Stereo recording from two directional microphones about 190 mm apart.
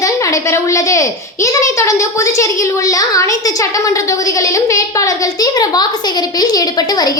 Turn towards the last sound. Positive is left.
turn(degrees=20)  # may be behind; listen again after turning